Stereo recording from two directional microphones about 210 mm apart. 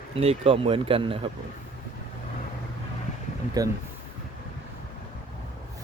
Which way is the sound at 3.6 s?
15° right (ahead or behind).